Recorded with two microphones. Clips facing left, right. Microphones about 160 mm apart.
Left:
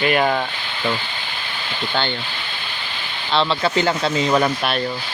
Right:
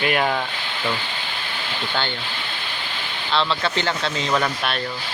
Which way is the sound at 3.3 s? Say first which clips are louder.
Left 3 dB; 30° left (ahead or behind).